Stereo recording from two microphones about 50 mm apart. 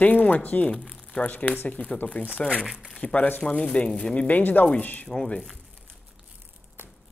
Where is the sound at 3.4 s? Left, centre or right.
Centre.